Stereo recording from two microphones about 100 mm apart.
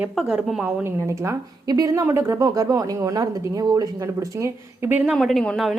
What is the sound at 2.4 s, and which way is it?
A woman's voice, 35° right (ahead or behind).